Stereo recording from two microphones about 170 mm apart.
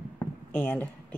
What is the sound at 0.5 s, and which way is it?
Speech, 10° left (ahead or behind).